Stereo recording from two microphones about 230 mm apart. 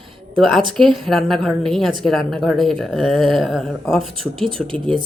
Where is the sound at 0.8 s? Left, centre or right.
Centre.